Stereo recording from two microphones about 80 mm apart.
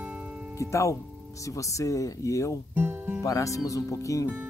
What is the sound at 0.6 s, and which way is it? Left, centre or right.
Speech, left.